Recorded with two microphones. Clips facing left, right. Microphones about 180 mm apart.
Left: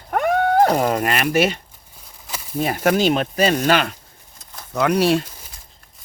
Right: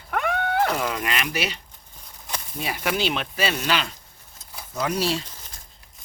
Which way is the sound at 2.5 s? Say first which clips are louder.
Left 9 dB; 45° left (ahead or behind).